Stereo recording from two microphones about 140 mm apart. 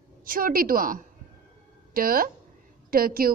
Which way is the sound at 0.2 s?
90° right.